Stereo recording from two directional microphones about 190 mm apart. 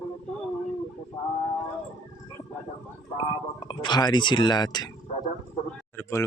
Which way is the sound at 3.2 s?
25° left (ahead or behind).